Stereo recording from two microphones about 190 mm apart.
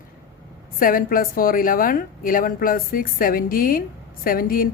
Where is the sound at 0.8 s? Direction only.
50° left (ahead or behind).